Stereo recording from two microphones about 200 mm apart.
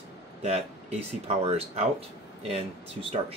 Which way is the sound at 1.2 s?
30° right (ahead or behind).